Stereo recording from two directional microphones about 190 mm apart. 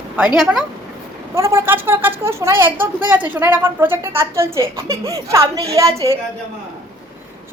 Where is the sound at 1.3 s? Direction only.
15° right (ahead or behind).